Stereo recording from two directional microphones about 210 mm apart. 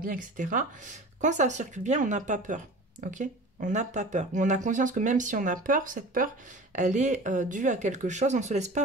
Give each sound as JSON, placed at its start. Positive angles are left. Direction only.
{"t": 0.0, "sound": "speech", "side_deg": -40}